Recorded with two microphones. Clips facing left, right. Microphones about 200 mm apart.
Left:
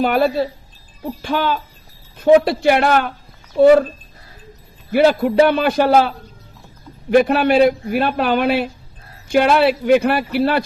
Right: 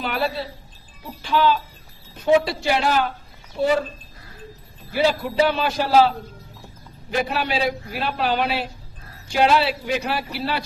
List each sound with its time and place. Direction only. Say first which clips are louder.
0.0 s a man's voice: left 9 dB; 50° left (ahead or behind)
4.9 s a man's voice: left 7 dB; 55° left (ahead or behind)